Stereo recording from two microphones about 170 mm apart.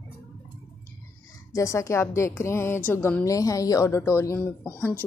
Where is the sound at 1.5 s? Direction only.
20° left (ahead or behind).